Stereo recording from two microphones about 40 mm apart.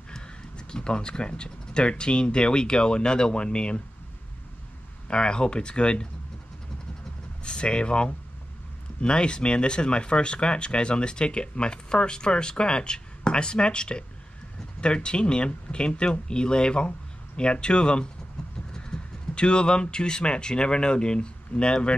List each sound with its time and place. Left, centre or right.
0.1 s speech: left
5.0 s speech: left
7.4 s speech: left